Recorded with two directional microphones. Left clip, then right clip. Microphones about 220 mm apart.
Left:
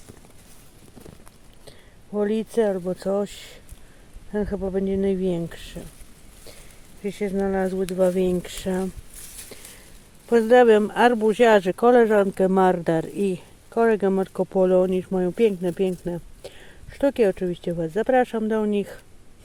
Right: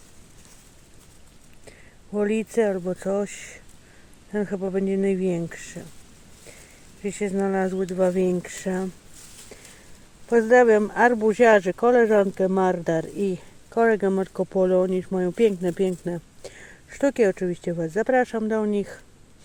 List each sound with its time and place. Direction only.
2.1 s speech: 5° left (ahead or behind)
7.0 s speech: 5° left (ahead or behind)
10.2 s speech: 20° left (ahead or behind)